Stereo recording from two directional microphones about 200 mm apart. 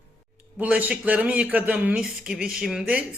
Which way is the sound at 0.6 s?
5° right (ahead or behind).